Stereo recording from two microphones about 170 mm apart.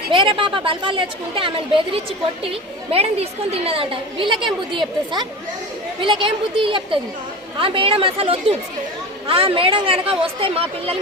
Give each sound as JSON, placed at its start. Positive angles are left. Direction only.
{"t": 0.1, "sound": "a woman's voice", "side_deg": -30}